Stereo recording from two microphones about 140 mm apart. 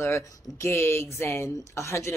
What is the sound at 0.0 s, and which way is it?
Speech, 20° left (ahead or behind).